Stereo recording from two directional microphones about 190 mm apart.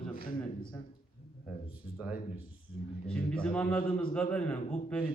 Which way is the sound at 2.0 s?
10° right (ahead or behind).